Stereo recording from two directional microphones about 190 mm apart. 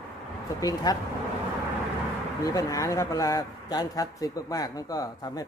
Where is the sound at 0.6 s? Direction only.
20° left (ahead or behind).